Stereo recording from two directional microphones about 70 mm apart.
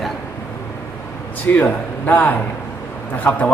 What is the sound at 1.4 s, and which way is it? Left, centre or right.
A man's voice, left.